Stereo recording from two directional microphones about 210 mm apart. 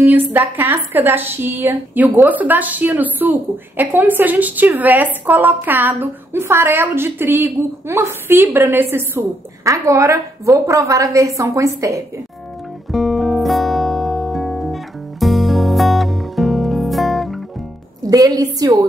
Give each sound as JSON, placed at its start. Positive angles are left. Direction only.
{"t": 0.3, "sound": "a woman's voice", "side_deg": -10}
{"t": 12.9, "sound": "music", "side_deg": 0}
{"t": 18.1, "sound": "a woman's voice", "side_deg": -15}